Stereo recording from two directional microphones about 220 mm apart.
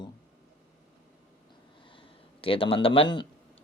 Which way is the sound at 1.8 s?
25° left (ahead or behind).